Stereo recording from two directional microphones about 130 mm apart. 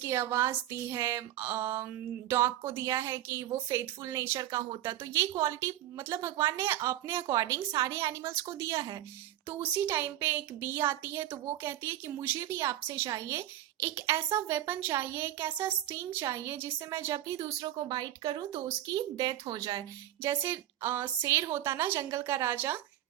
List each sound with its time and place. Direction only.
0.0 s a woman's voice: 20° right (ahead or behind)